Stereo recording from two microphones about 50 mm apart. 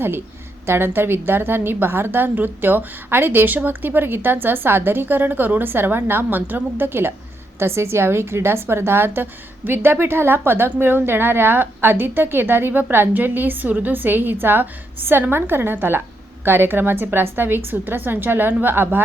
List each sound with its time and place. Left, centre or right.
0.7 s a woman's voice: right
7.6 s a woman's voice: right